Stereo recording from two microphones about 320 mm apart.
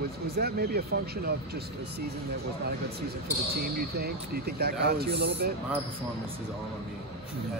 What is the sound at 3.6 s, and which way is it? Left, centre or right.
Speech, right.